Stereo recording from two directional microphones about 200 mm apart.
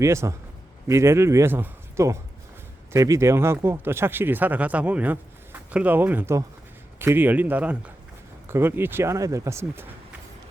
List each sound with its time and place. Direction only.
0.0 s speech: 15° right (ahead or behind)